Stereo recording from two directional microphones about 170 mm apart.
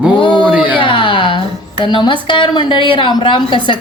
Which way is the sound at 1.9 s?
30° left (ahead or behind).